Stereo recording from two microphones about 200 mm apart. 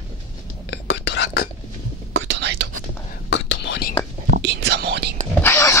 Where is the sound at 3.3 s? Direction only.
65° left (ahead or behind).